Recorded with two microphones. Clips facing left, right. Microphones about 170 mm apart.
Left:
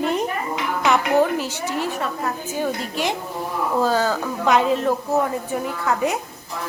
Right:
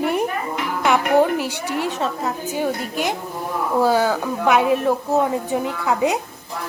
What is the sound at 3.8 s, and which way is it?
A woman's voice, 10° right (ahead or behind).